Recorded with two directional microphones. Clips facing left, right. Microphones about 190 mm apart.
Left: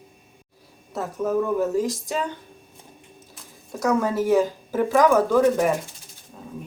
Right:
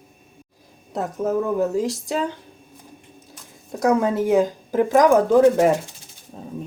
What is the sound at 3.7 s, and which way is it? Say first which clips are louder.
Speech: right 3 dB; 20° right (ahead or behind).